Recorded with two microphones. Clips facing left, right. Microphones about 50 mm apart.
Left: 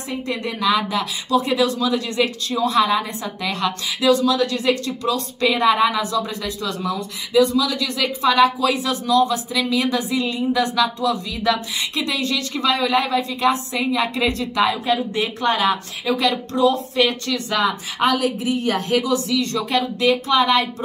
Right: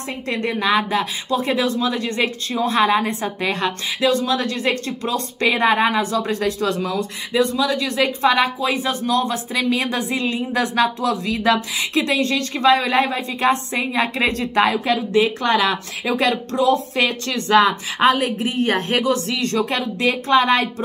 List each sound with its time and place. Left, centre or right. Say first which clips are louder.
0.3 s speech: right 1 dB; right
7.3 s speech: left 2 dB; right
16.6 s speech: even; right
17.0 s speech: left 1 dB; right